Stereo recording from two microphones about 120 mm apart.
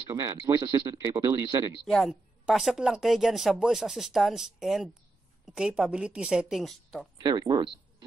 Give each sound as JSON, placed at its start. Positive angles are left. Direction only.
{"t": 0.1, "sound": "speech", "side_deg": -30}
{"t": 1.9, "sound": "a woman's voice", "side_deg": 0}
{"t": 7.2, "sound": "speech", "side_deg": -35}